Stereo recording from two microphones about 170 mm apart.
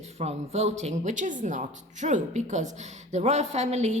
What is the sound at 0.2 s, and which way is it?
Speech, 40° right (ahead or behind).